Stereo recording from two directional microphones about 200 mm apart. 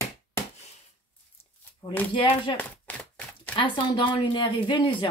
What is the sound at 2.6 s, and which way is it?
Chopping, 10° left (ahead or behind).